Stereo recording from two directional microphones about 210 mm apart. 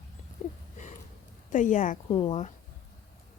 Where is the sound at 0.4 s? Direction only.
40° left (ahead or behind).